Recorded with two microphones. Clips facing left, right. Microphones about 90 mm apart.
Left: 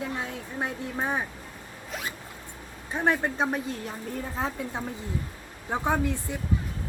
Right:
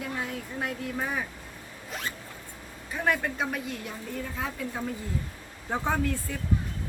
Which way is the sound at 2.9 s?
30° left (ahead or behind).